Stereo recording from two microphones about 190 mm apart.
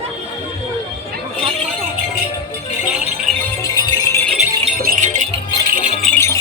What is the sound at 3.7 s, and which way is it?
Music, 20° left (ahead or behind).